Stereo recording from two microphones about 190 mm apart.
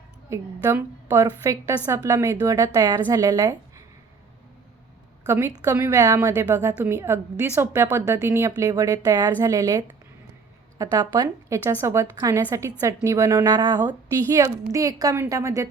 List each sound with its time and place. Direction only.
0.3 s a woman's voice: 15° right (ahead or behind)
5.3 s a woman's voice: 15° right (ahead or behind)
10.9 s a woman's voice: 20° right (ahead or behind)